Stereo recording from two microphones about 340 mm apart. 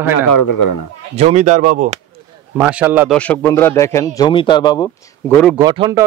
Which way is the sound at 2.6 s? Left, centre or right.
Centre.